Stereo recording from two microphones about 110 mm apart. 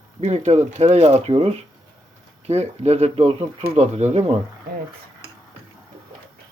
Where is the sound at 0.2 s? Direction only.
90° right.